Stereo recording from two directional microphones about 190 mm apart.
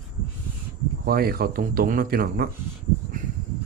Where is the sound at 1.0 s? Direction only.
50° right (ahead or behind).